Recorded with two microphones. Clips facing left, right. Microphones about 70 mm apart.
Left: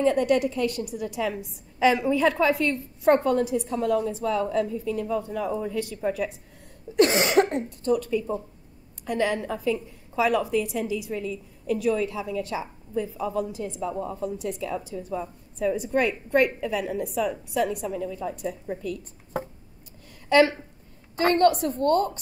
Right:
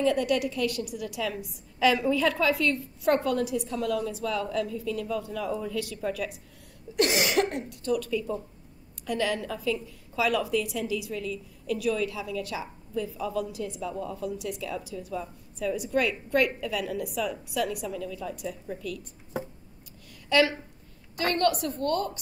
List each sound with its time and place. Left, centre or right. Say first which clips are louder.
0.0 s a woman's voice: left 4 dB; left
7.0 s a woman's voice: left 5 dB; left
20.2 s a woman's voice: left 4 dB; left